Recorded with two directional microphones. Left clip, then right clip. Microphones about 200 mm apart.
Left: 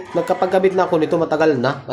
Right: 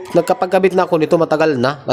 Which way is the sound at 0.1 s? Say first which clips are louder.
Right 3 dB; 45° right (ahead or behind).